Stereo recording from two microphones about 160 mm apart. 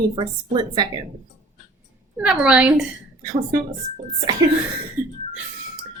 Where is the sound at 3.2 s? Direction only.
25° right (ahead or behind).